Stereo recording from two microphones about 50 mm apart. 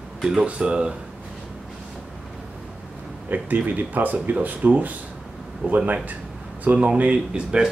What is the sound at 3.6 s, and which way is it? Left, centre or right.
Speech, right.